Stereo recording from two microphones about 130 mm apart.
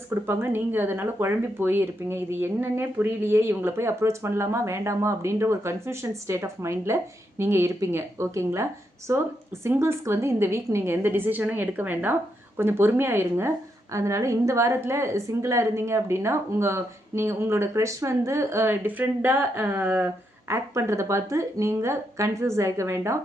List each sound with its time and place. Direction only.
0.1 s speech: 15° right (ahead or behind)